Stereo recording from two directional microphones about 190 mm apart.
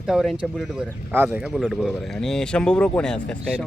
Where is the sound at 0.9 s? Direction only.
10° right (ahead or behind).